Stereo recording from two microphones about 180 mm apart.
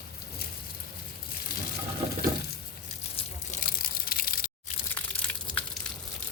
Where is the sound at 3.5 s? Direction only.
50° left (ahead or behind).